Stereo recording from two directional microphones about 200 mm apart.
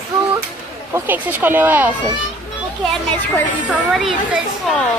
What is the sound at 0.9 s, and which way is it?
Speech, 10° right (ahead or behind).